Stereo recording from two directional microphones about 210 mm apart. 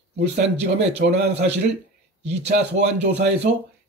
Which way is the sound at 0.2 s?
55° right (ahead or behind).